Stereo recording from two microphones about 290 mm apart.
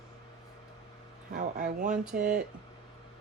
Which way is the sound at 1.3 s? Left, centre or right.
Right.